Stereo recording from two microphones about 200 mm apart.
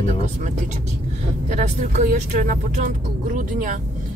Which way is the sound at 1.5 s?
40° right (ahead or behind).